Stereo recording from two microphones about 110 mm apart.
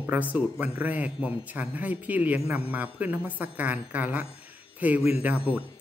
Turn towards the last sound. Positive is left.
turn(degrees=-10)  # may be behind; listen again after turning